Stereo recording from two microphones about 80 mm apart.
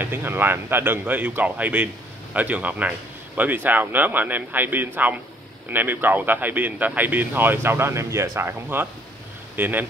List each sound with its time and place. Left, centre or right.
0.0 s speech: right